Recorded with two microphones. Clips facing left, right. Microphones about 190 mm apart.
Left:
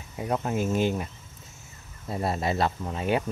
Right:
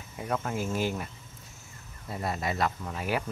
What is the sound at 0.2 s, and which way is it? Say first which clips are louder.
Speech: left 4 dB; 20° left (ahead or behind).